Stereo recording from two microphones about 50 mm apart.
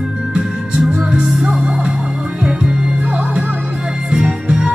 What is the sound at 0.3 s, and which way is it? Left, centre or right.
Music, right.